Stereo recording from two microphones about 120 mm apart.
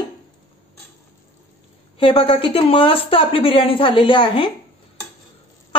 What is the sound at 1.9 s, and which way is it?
Speech, 45° left (ahead or behind).